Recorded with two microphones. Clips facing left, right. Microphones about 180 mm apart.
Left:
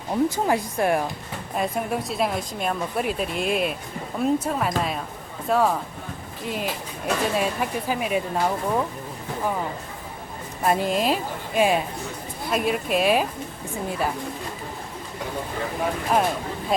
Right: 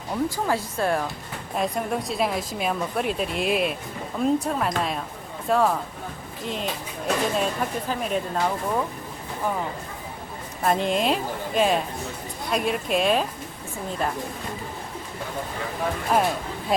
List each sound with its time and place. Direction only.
0.1 s speech: 20° left (ahead or behind)
1.5 s a woman's voice: centre (ahead or behind)
10.6 s a woman's voice: 5° left (ahead or behind)
16.1 s a woman's voice: centre (ahead or behind)